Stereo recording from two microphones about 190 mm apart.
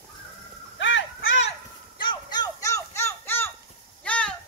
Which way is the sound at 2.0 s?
20° left (ahead or behind).